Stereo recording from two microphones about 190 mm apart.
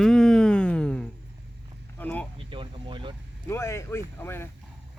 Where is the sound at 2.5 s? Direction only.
25° right (ahead or behind).